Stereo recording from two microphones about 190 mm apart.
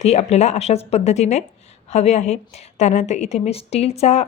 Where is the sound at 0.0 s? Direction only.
35° left (ahead or behind).